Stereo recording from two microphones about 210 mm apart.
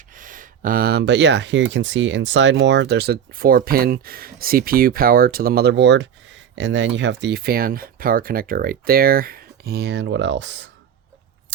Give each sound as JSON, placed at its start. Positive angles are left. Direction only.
{"t": 0.2, "sound": "speech", "side_deg": -40}